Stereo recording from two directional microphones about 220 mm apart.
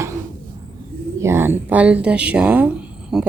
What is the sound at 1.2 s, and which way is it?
Speech, 10° right (ahead or behind).